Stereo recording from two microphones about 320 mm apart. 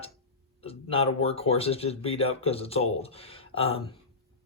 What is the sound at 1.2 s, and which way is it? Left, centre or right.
Speech, centre.